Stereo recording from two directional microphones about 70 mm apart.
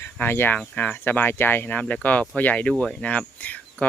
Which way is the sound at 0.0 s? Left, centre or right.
Left.